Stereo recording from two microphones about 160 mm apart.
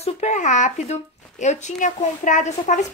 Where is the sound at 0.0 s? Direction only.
45° left (ahead or behind).